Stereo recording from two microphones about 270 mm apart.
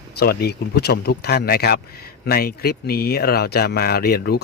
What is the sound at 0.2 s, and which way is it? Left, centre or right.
Speech, left.